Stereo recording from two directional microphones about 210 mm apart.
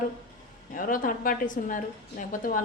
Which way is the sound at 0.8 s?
40° left (ahead or behind).